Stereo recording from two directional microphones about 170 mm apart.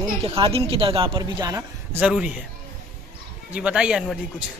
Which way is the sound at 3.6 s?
5° right (ahead or behind).